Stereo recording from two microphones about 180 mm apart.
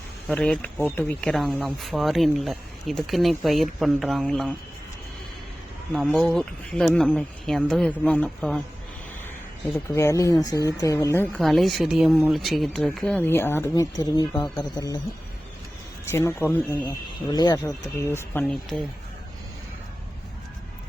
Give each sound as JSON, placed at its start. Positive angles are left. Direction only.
{"t": 0.3, "sound": "speech", "side_deg": 5}
{"t": 5.9, "sound": "speech", "side_deg": 0}
{"t": 9.9, "sound": "speech", "side_deg": 15}
{"t": 11.3, "sound": "speech", "side_deg": 0}
{"t": 16.0, "sound": "speech", "side_deg": 15}